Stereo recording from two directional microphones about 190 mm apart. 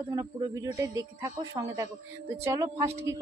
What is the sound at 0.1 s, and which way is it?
Speech, 20° right (ahead or behind).